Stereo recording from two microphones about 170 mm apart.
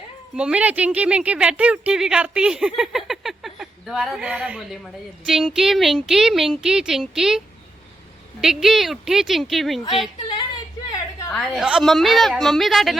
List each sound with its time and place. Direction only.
0.3 s speech: 5° right (ahead or behind)
10.9 s a sound: 20° left (ahead or behind)
11.3 s speech: 5° right (ahead or behind)